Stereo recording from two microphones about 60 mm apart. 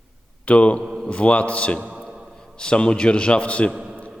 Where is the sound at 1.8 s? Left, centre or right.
Right.